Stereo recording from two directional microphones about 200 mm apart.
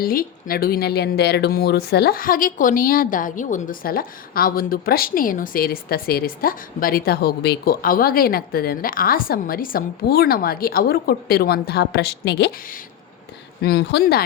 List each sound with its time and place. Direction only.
0.0 s speech: 45° left (ahead or behind)